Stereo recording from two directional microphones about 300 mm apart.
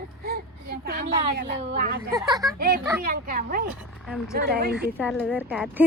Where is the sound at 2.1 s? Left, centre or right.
Centre.